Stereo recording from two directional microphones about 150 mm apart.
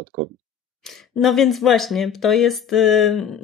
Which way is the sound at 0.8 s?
Centre (ahead or behind).